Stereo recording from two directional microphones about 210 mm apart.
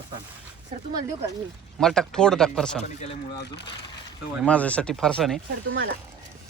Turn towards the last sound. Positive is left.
turn(degrees=-45)  # may be behind; listen again after turning